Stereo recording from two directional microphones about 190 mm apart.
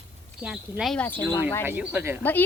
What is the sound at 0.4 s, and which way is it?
Speech, 5° right (ahead or behind).